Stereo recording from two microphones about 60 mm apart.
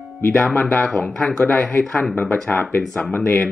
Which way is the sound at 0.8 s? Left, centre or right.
Centre.